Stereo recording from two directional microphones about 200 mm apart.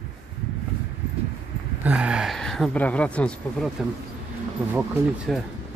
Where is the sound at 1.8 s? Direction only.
5° right (ahead or behind).